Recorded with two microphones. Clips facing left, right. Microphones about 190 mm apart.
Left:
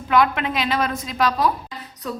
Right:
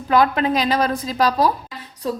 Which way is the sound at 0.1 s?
35° right (ahead or behind).